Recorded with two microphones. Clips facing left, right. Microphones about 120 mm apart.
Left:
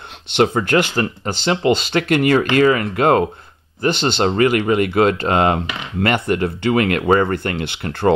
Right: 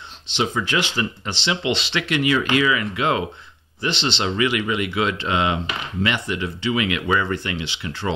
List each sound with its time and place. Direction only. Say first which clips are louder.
0.3 s speech: left 7 dB; 55° left (ahead or behind)